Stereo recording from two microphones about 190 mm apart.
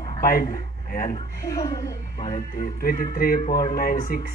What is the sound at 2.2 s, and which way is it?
Speech, 45° left (ahead or behind).